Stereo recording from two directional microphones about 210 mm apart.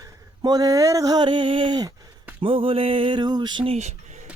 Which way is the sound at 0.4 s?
15° right (ahead or behind).